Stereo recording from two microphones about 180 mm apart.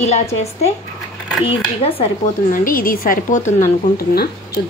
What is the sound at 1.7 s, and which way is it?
Speech, 35° left (ahead or behind).